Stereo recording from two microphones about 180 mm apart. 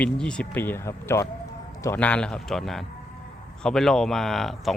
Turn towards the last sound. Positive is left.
turn(degrees=0)  # may be behind; listen again after turning